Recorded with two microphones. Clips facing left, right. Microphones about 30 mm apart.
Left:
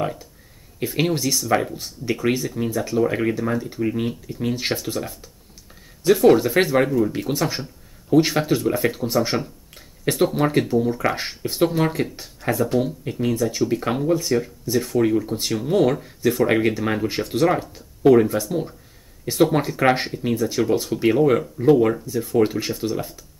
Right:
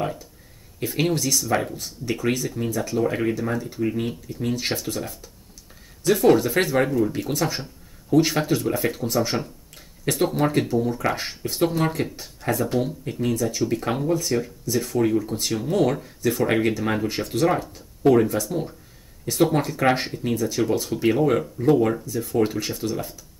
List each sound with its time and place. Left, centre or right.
0.0 s speech: centre
8.5 s speech: centre
9.0 s speech: centre
10.1 s speech: centre